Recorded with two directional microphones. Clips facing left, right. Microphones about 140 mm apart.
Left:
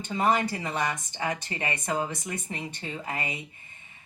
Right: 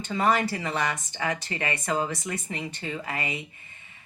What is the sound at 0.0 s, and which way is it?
Speech, 15° left (ahead or behind).